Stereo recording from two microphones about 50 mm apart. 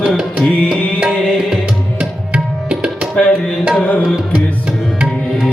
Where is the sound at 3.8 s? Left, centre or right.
Left.